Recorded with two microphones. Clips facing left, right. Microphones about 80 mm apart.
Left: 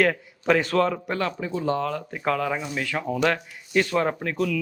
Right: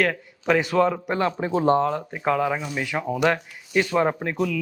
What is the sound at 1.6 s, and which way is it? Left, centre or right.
Speech, right.